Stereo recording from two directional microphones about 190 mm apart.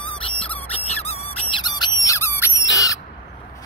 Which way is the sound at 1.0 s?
30° left (ahead or behind).